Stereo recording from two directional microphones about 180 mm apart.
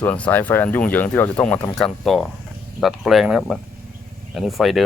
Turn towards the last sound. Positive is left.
turn(degrees=0)  # may be behind; listen again after turning